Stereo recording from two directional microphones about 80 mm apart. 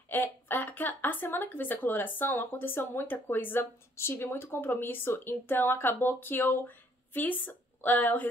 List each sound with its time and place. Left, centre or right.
0.1 s speech: left